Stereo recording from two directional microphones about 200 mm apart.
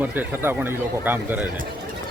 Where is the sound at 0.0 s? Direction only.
10° right (ahead or behind).